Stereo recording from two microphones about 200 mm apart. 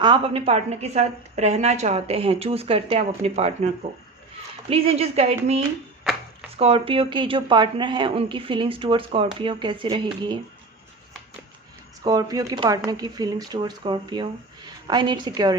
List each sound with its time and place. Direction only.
0.0 s a woman's voice: 25° right (ahead or behind)
4.7 s a woman's voice: 30° right (ahead or behind)
6.6 s speech: 30° right (ahead or behind)
12.0 s speech: 20° right (ahead or behind)